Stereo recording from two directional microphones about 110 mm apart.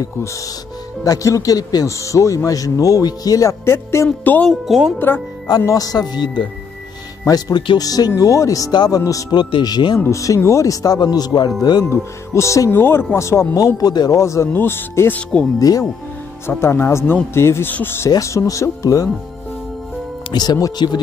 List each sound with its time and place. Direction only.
1.0 s a man's voice: 30° left (ahead or behind)
4.5 s speech: centre (ahead or behind)
4.9 s speech: 20° left (ahead or behind)
5.6 s a man's voice: 30° left (ahead or behind)
10.0 s a man's voice: 30° left (ahead or behind)
11.8 s speech: 25° left (ahead or behind)
16.4 s speech: 25° left (ahead or behind)
20.2 s a man's voice: 35° left (ahead or behind)